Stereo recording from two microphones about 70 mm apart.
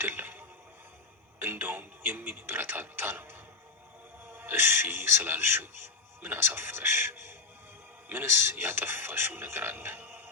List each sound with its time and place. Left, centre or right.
0.0 s drip: right
1.4 s music: right
4.3 s speech: right